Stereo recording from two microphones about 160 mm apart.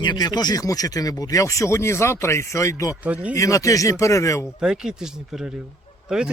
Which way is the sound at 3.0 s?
10° right (ahead or behind).